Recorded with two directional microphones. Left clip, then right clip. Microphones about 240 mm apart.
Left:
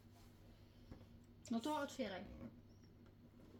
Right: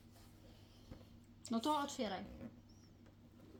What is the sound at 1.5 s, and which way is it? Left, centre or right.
Speech, right.